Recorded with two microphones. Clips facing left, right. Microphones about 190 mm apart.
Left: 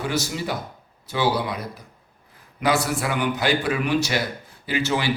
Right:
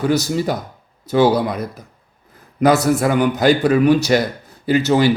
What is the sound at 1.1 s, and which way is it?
A man's voice, 45° right (ahead or behind).